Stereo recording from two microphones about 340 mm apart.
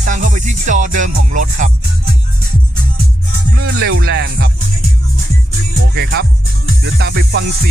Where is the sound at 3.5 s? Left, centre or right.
Right.